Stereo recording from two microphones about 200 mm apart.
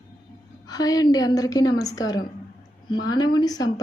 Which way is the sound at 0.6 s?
20° left (ahead or behind).